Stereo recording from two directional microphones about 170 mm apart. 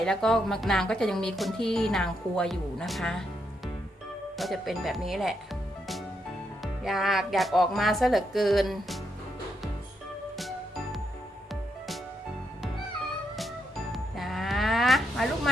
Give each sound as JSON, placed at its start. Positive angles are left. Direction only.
{"t": 0.0, "sound": "speech", "side_deg": 5}
{"t": 4.4, "sound": "speech", "side_deg": 0}
{"t": 6.6, "sound": "speech", "side_deg": 0}
{"t": 13.9, "sound": "livestock", "side_deg": 0}